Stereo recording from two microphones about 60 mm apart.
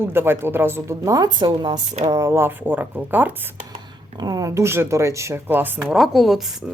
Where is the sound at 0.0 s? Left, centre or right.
Right.